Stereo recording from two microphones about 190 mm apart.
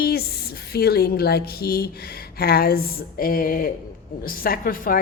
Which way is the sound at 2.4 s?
55° left (ahead or behind).